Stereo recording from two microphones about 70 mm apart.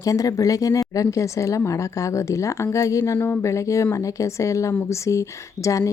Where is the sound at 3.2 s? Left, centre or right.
Left.